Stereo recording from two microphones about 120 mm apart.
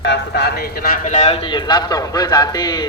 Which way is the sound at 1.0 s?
80° left.